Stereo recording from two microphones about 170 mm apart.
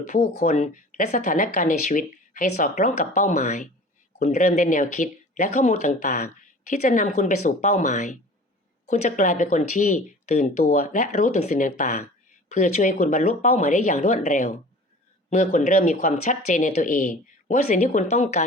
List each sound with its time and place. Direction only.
0.0 s speech: 50° left (ahead or behind)